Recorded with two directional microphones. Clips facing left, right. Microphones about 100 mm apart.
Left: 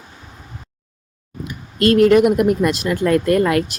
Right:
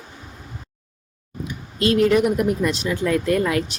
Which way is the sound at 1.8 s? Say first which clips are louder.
Left 5 dB; 55° left (ahead or behind).